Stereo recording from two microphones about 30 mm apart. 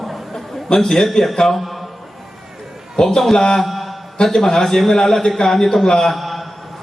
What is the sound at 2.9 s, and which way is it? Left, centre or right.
Speech, left.